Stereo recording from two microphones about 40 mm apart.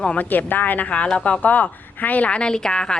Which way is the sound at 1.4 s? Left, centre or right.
Left.